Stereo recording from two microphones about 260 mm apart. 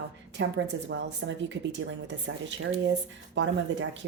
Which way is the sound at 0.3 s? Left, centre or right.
Right.